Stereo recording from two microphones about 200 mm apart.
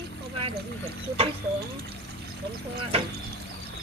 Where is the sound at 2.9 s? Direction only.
30° right (ahead or behind).